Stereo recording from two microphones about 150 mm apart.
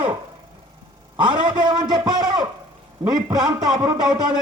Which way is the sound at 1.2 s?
30° right (ahead or behind).